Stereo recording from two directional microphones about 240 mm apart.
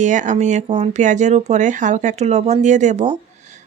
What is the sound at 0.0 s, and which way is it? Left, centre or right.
Speech, right.